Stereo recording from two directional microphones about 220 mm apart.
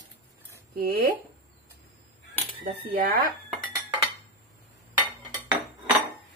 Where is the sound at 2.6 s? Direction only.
40° right (ahead or behind).